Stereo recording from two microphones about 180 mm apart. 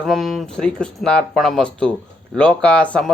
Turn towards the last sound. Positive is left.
turn(degrees=5)  # may be behind; listen again after turning